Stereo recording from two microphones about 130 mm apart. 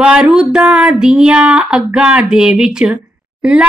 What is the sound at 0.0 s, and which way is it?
Speech, 5° right (ahead or behind).